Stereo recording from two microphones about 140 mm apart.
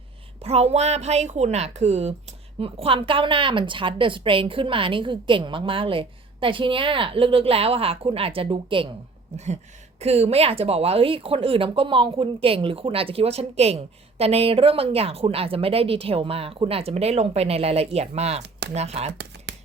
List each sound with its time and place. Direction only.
0.4 s a woman's voice: 45° right (ahead or behind)
9.3 s speech: 50° right (ahead or behind)